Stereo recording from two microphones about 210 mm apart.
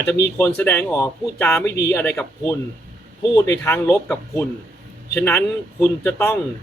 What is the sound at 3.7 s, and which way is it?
Speech, 10° left (ahead or behind).